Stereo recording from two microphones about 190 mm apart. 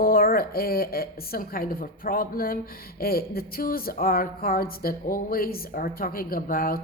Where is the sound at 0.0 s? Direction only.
50° left (ahead or behind).